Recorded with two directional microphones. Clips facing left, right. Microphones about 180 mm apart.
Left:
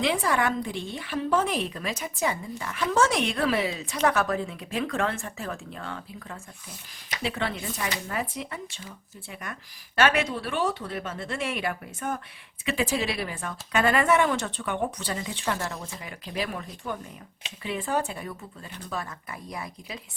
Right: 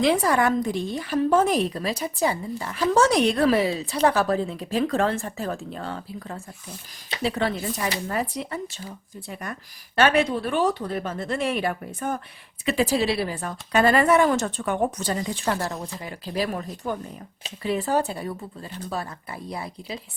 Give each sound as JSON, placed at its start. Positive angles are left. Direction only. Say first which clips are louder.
{"t": 0.0, "sound": "a woman's voice", "louder": "right 5 dB", "side_deg": -40}